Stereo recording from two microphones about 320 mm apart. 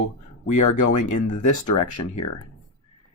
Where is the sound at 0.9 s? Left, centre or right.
Left.